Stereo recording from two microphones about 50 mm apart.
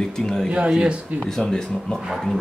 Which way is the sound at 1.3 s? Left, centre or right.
Centre.